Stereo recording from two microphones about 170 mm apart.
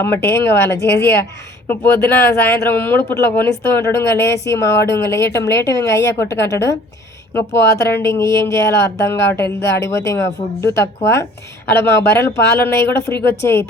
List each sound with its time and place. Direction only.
0.0 s speech: 15° left (ahead or behind)